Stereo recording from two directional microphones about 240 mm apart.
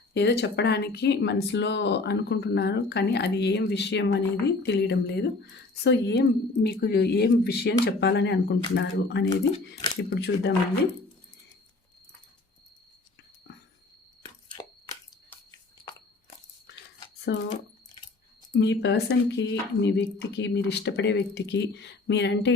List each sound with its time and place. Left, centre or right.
0.1 s speech: left
13.5 s a sound: left
14.2 s a sound: centre
15.8 s biting: centre
17.3 s speech: left
18.5 s speech: left